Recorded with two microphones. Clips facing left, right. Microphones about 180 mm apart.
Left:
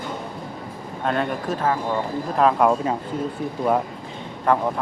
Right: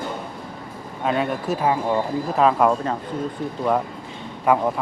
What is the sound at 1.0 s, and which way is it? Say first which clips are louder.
Speech: right 1 dB; 5° right (ahead or behind).